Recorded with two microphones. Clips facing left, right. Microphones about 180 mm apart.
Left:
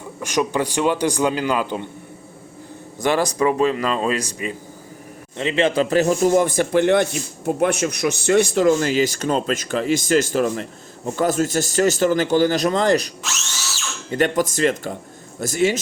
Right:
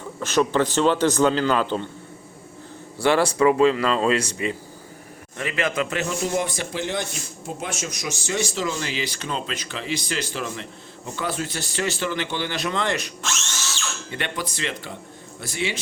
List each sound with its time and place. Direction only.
0.2 s a man's voice: 15° left (ahead or behind)
3.0 s a man's voice: 15° left (ahead or behind)
5.4 s a man's voice: 25° left (ahead or behind)
14.1 s a man's voice: 40° left (ahead or behind)